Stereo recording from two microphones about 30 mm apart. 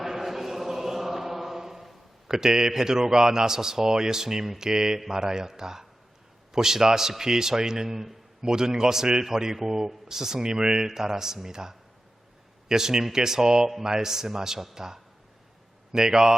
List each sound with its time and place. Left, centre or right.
0.0 s chant: centre
4.9 s a man's voice: centre
8.4 s a man's voice: right